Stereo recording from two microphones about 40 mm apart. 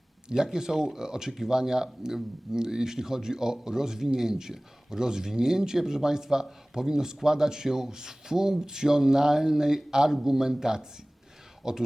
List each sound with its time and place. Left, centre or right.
0.4 s speech: centre